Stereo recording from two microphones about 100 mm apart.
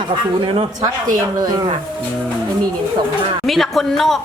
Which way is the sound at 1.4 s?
45° right (ahead or behind).